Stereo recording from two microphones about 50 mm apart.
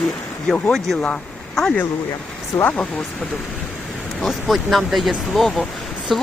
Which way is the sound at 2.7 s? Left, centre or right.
Left.